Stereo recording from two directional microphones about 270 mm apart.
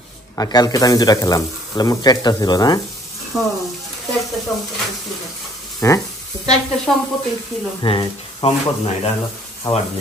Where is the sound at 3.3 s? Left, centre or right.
Centre.